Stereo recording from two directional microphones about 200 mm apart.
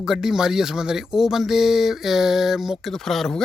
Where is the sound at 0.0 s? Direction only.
Centre (ahead or behind).